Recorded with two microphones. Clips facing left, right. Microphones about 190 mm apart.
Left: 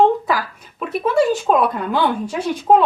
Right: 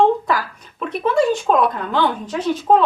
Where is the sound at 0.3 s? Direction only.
5° left (ahead or behind).